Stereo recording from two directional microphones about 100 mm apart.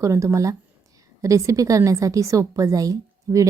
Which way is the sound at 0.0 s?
30° right (ahead or behind).